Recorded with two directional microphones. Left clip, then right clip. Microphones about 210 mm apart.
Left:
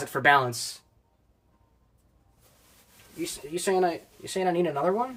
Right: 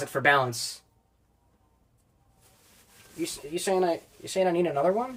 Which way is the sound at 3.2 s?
15° left (ahead or behind).